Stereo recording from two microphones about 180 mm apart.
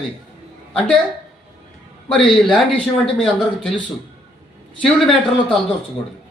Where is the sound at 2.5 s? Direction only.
5° left (ahead or behind).